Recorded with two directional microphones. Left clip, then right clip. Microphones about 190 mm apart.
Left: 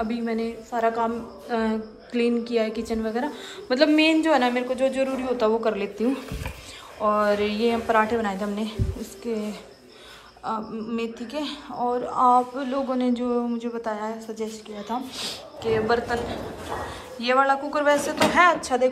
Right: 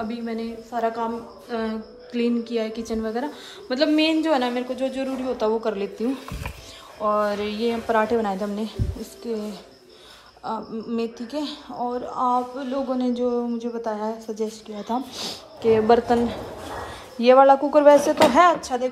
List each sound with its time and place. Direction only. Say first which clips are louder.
0.1 s a woman's voice: left 3 dB; 15° right (ahead or behind); by 16.2 s 35° right (ahead or behind)
17.2 s speech: right 7 dB; 35° right (ahead or behind)
18.5 s a woman's voice: left 1 dB; 15° right (ahead or behind)